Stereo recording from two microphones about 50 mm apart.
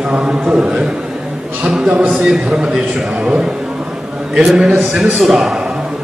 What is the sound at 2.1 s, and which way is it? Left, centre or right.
A man's voice, centre.